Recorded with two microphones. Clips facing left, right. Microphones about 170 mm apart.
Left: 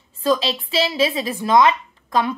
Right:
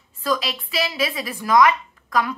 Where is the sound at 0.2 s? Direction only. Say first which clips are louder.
Left 5 dB; 25° left (ahead or behind).